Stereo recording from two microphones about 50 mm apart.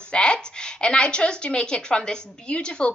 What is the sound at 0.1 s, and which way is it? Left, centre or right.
A woman's voice, centre.